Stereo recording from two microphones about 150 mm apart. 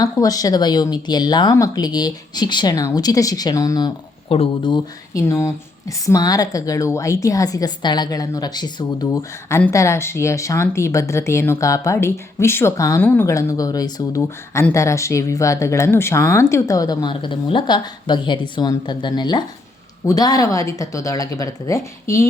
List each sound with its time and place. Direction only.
0.0 s a woman's voice: 25° left (ahead or behind)
4.3 s speech: 35° left (ahead or behind)
5.1 s a woman's voice: 20° left (ahead or behind)